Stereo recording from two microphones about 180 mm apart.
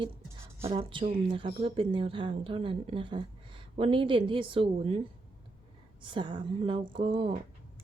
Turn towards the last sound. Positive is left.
turn(degrees=-30)  # may be behind; listen again after turning